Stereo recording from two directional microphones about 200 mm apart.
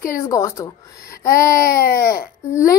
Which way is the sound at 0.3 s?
15° left (ahead or behind).